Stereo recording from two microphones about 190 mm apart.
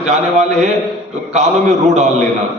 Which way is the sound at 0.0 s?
35° right (ahead or behind).